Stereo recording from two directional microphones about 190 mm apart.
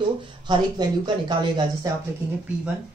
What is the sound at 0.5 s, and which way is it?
Speech, 25° right (ahead or behind).